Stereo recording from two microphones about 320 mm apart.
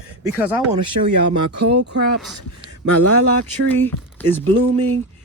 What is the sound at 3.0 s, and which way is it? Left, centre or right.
Speech, right.